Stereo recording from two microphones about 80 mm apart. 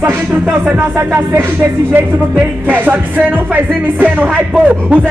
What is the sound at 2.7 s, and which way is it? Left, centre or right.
Music, right.